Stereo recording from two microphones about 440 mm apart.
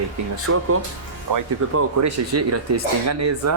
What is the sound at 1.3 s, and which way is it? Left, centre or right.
Speech, right.